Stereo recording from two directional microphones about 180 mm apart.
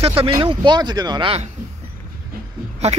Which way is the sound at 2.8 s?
35° right (ahead or behind).